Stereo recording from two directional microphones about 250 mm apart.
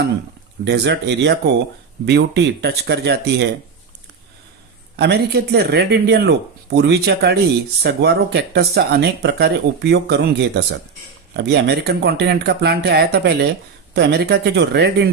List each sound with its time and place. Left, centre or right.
0.6 s speech: right
4.9 s speech: right